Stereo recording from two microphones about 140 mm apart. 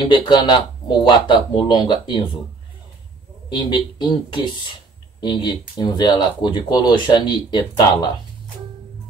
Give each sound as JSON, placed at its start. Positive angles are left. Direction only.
{"t": 0.0, "sound": "speech", "side_deg": 30}
{"t": 3.4, "sound": "speech", "side_deg": 35}